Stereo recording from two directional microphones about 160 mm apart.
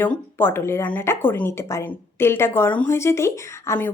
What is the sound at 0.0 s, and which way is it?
Speech, 15° left (ahead or behind).